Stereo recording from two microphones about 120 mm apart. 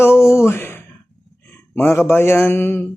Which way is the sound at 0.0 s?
20° left (ahead or behind).